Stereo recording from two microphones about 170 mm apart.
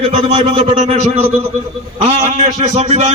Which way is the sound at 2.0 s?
40° right (ahead or behind).